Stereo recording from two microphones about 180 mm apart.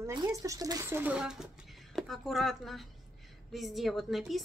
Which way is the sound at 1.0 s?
5° right (ahead or behind).